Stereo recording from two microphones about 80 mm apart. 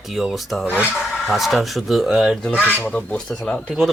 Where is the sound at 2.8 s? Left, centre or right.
Centre.